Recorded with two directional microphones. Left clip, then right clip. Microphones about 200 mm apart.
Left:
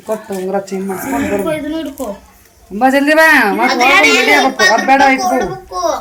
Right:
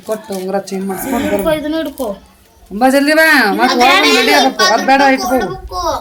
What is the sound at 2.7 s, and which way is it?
Speech, 20° right (ahead or behind).